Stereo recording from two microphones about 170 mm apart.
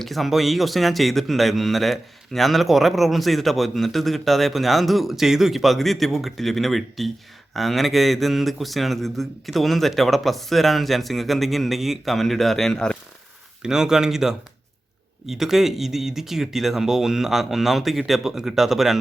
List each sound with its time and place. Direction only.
0.0 s a man's voice: centre (ahead or behind)